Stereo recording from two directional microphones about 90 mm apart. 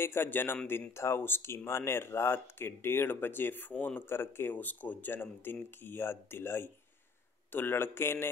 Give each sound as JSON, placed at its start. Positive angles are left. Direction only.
{"t": 0.0, "sound": "speech", "side_deg": 25}